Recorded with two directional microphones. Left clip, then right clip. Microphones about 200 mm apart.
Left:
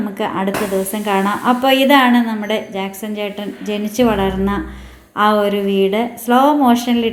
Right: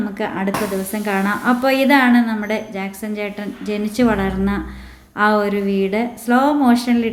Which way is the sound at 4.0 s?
10° right (ahead or behind).